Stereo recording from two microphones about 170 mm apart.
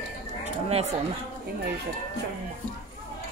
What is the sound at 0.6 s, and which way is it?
Speech, 40° right (ahead or behind).